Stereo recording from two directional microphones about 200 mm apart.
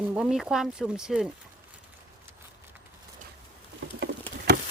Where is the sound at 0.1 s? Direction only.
5° right (ahead or behind).